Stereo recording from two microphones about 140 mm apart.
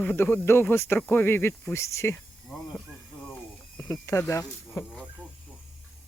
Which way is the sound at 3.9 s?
20° left (ahead or behind).